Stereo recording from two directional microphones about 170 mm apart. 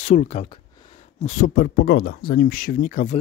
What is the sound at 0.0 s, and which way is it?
Speech, 45° left (ahead or behind).